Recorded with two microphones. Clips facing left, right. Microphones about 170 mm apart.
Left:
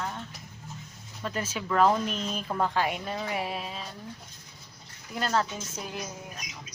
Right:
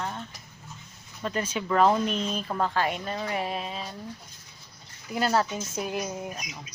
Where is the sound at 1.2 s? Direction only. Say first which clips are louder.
Right 3 dB; 5° left (ahead or behind).